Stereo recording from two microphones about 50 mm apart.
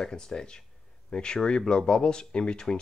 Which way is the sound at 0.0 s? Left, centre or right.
Centre.